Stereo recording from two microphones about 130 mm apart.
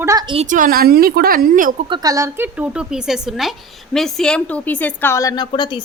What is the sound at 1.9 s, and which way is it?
Speech, 30° right (ahead or behind).